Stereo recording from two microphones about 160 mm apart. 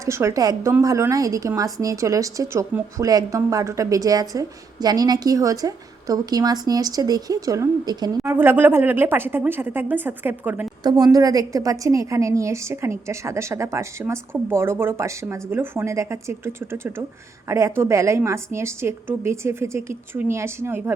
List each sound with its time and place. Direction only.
0.0 s a woman's voice: 20° right (ahead or behind)
8.3 s a woman's voice: 15° right (ahead or behind)
10.8 s a woman's voice: 25° right (ahead or behind)